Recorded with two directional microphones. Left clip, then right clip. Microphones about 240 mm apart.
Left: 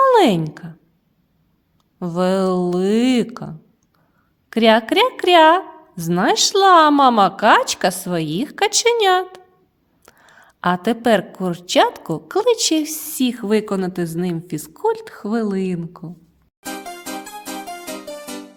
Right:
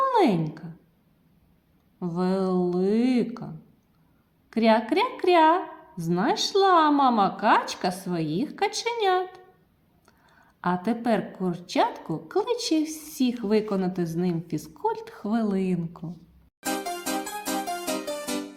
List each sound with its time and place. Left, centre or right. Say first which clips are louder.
0.0 s a woman's voice: left 9 dB; left
2.0 s a woman's voice: left 9 dB; left
16.6 s music: right 1 dB; centre